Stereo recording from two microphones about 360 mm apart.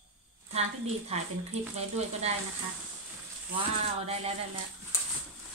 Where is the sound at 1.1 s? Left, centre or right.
Centre.